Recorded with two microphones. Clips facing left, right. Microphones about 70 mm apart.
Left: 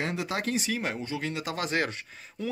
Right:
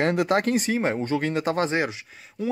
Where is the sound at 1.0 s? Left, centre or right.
Right.